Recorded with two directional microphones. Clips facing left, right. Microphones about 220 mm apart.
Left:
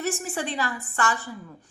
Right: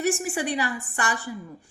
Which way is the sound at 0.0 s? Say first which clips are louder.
Right 3 dB; 15° right (ahead or behind).